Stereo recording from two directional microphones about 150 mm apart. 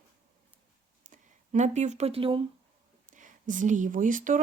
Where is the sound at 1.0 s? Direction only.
55° right (ahead or behind); by 2.4 s 35° right (ahead or behind).